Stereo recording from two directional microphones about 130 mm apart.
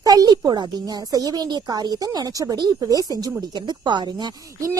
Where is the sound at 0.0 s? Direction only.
30° right (ahead or behind).